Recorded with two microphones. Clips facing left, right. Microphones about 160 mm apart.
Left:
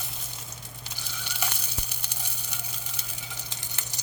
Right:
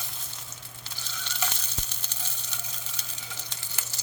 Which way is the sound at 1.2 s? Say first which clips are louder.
Right 1 dB; 10° left (ahead or behind).